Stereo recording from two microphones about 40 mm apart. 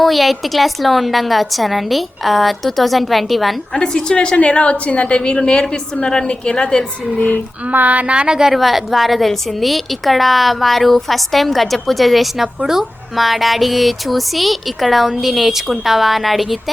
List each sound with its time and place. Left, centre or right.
0.0 s a woman's voice: centre
3.8 s a woman's voice: left
7.7 s speech: right
8.5 s a woman's voice: centre